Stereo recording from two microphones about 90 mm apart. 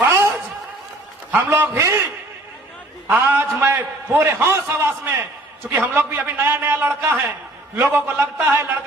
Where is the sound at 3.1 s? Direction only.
25° right (ahead or behind).